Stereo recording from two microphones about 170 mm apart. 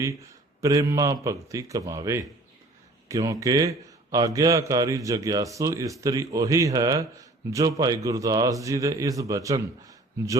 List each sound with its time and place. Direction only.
0.6 s speech: 20° right (ahead or behind)